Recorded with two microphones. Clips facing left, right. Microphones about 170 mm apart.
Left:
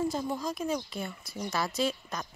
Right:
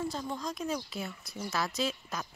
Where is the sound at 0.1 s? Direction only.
10° left (ahead or behind).